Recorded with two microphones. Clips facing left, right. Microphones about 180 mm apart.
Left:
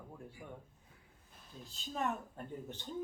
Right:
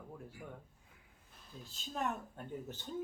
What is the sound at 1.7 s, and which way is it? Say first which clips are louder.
Speech: left 1 dB; centre (ahead or behind).